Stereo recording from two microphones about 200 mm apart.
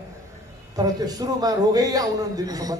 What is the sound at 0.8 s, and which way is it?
A man's voice, 20° right (ahead or behind).